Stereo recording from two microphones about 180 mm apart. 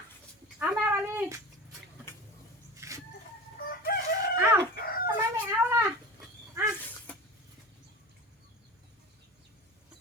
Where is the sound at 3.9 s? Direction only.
55° left (ahead or behind).